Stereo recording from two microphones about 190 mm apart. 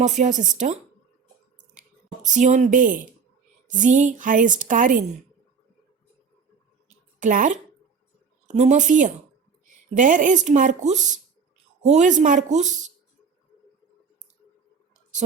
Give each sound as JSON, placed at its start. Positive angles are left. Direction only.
{"t": 0.0, "sound": "speech", "side_deg": -40}
{"t": 2.2, "sound": "a woman's voice", "side_deg": -40}
{"t": 6.8, "sound": "a sound", "side_deg": -45}
{"t": 8.4, "sound": "speech", "side_deg": -35}